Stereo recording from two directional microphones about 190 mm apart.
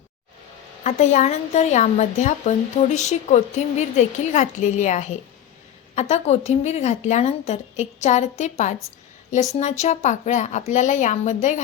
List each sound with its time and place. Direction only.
0.9 s speech: 40° left (ahead or behind)